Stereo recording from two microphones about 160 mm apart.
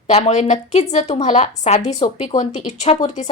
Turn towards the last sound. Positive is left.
turn(degrees=40)  # may be behind; listen again after turning